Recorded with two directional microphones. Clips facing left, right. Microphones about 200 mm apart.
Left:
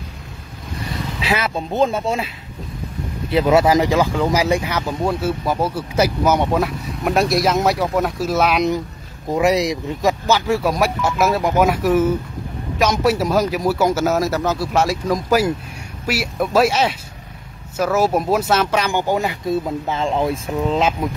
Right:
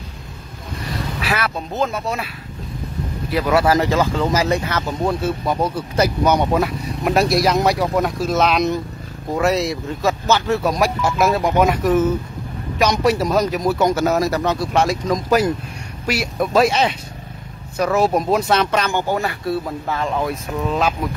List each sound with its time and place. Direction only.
1.2 s speech: 20° left (ahead or behind)
3.3 s speech: 25° left (ahead or behind)